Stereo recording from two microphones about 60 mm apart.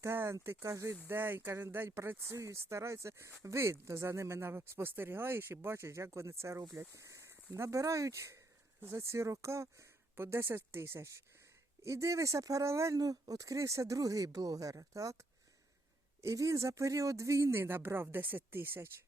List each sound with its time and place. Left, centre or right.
0.0 s speech: right
0.6 s speech: right
1.0 s speech: right
2.3 s speech: right
10.2 s speech: right
13.0 s speech: right